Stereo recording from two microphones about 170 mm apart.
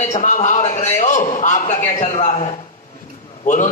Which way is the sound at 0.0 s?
45° left (ahead or behind).